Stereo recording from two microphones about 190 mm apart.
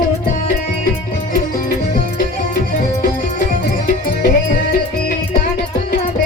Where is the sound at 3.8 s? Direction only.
45° left (ahead or behind).